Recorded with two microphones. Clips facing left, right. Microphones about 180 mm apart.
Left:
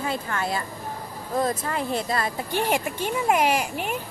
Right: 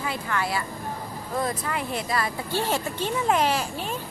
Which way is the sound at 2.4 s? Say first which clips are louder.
Left 2 dB; 15° left (ahead or behind).